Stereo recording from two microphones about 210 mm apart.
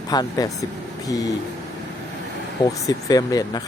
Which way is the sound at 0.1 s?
20° left (ahead or behind).